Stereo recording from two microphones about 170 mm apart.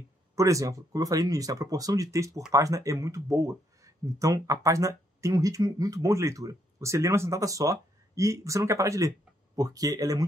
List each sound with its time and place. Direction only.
0.4 s speech: 20° right (ahead or behind)